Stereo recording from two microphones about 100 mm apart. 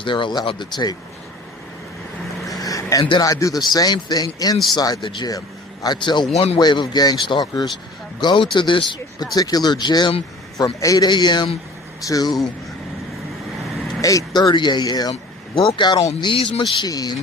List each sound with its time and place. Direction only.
0.0 s speech: 55° left (ahead or behind)
2.6 s vehicle: 35° left (ahead or behind)
3.1 s speech: 40° left (ahead or behind)
5.0 s speech: 55° left (ahead or behind)
6.3 s speech: 90° left
6.6 s speech: 45° left (ahead or behind)
9.3 s speech: 40° left (ahead or behind)
14.0 s speech: 35° left (ahead or behind)
15.1 s speech: 60° left (ahead or behind)
16.2 s speech: 60° left (ahead or behind)
16.8 s speech: 40° left (ahead or behind)